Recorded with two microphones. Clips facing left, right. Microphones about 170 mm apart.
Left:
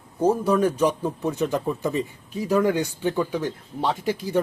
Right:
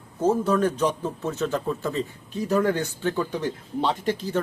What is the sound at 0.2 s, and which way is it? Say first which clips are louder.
Speech: left 1 dB; 10° left (ahead or behind).